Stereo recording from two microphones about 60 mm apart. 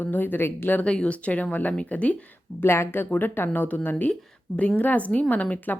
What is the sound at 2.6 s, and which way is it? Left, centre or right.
A woman's voice, left.